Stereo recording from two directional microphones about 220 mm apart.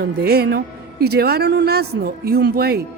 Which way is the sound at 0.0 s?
45° right (ahead or behind).